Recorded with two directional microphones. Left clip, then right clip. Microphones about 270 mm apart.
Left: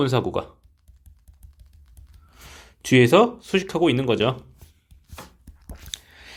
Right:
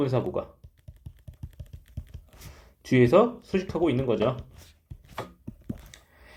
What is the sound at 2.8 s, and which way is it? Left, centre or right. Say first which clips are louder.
Speech: left 4 dB; left.